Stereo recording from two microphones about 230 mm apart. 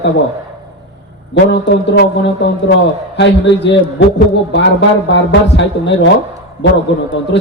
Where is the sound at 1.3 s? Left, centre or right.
Left.